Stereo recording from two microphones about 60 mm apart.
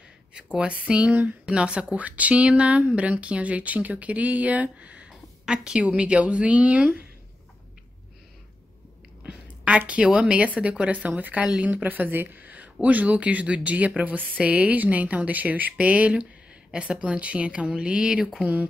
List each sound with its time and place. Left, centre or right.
0.3 s speech: centre
9.2 s a woman's voice: right